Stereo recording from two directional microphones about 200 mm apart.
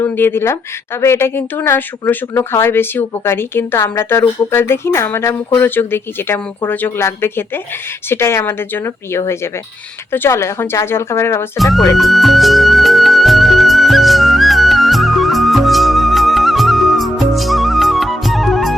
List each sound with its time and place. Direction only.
0.0 s speech: 10° left (ahead or behind)
11.5 s speech: centre (ahead or behind)
11.9 s music: centre (ahead or behind)